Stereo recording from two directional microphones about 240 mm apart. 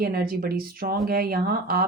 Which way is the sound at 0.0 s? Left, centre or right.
Right.